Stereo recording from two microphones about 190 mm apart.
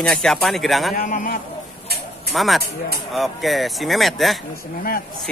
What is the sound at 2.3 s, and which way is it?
Speech, centre (ahead or behind).